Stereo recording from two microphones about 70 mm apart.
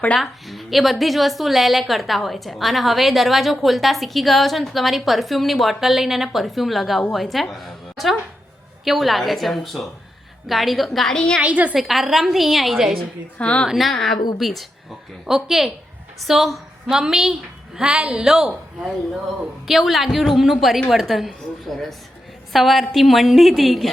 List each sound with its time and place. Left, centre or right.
0.2 s a woman's voice: centre
11.3 s a woman's voice: centre
11.7 s a woman's voice: centre
13.4 s a woman's voice: centre
13.7 s a woman's voice: centre